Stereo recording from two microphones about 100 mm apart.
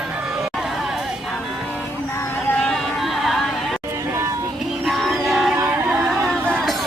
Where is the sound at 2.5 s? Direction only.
5° left (ahead or behind).